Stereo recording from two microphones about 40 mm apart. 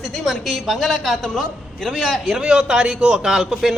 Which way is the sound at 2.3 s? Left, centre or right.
Centre.